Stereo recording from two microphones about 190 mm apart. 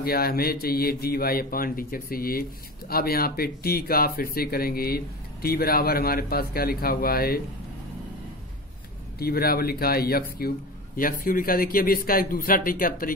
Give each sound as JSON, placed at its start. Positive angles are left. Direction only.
{"t": 0.0, "sound": "speech", "side_deg": 55}
{"t": 9.2, "sound": "speech", "side_deg": 55}